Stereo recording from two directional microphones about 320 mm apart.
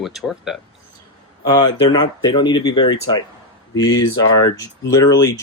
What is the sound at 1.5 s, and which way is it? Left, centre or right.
Speech, centre.